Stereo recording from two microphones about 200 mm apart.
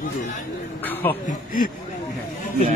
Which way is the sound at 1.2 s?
45° left (ahead or behind).